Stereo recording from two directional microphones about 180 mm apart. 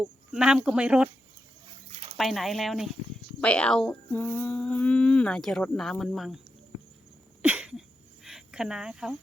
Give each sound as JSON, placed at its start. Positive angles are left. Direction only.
{"t": 0.0, "sound": "speech", "side_deg": -5}
{"t": 1.9, "sound": "dog", "side_deg": -35}
{"t": 2.1, "sound": "speech", "side_deg": 0}
{"t": 7.4, "sound": "cricket", "side_deg": -5}